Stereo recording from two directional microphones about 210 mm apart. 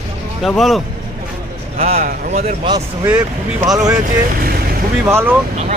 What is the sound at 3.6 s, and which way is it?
Speech, 15° right (ahead or behind).